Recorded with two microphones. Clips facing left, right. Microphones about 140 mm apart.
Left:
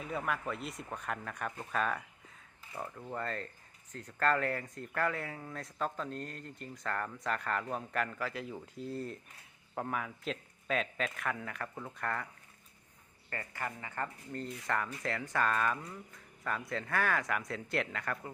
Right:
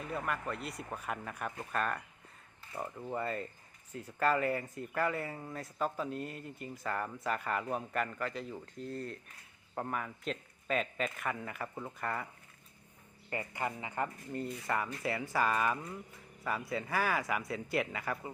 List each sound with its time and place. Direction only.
0.0 s speech: centre (ahead or behind)
13.3 s speech: 15° right (ahead or behind)